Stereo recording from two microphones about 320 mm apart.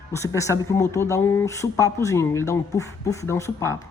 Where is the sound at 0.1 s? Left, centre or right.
Centre.